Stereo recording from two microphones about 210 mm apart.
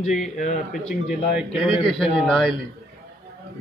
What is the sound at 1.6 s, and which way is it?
Speech, centre (ahead or behind).